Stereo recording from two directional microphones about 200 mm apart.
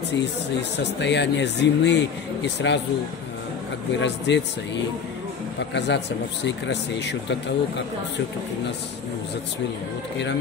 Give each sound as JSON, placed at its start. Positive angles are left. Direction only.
{"t": 0.1, "sound": "speech", "side_deg": 60}
{"t": 4.0, "sound": "speech", "side_deg": 60}